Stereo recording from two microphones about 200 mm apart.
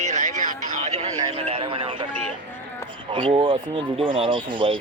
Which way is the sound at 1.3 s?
30° right (ahead or behind).